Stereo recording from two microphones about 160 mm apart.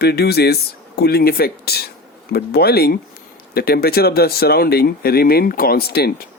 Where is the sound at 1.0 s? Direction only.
75° left (ahead or behind).